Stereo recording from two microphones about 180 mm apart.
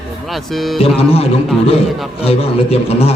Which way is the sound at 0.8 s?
35° left (ahead or behind).